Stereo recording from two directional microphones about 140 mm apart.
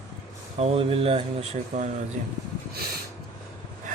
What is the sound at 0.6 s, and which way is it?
Speech, 45° right (ahead or behind).